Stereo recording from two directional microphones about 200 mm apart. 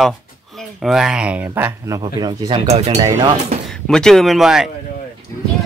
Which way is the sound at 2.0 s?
20° right (ahead or behind).